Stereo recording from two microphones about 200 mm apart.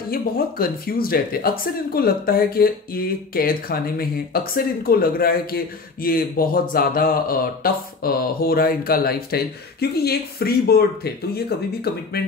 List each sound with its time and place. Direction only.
0.1 s speech: 45° left (ahead or behind)